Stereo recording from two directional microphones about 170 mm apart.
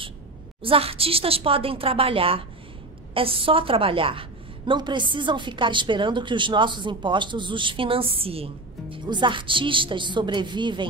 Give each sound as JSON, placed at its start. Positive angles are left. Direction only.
{"t": 0.6, "sound": "a woman's voice", "side_deg": -35}